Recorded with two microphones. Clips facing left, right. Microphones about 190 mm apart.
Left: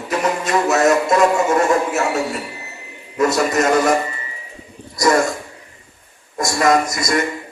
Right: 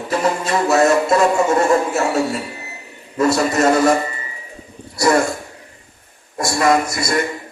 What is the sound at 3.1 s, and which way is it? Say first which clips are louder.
Speech: even; 30° right (ahead or behind).